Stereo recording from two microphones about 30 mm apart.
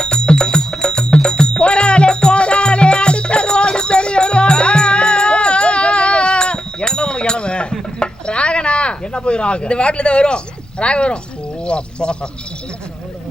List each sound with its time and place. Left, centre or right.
0.0 s music: left
7.9 s a sound: left
9.1 s speech: left